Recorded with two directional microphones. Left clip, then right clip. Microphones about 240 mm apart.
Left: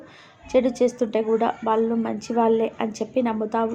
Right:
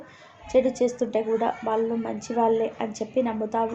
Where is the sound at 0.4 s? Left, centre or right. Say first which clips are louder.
Left 2 dB; left.